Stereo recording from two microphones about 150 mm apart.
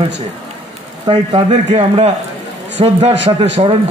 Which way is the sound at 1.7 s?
45° right (ahead or behind).